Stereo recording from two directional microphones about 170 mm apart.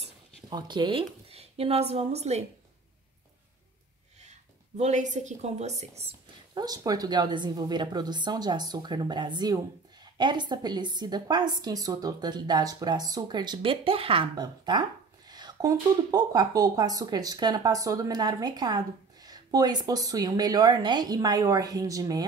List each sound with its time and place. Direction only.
0.0 s speech: 25° right (ahead or behind)
4.2 s a woman's voice: 40° right (ahead or behind)
6.5 s a woman's voice: 20° right (ahead or behind)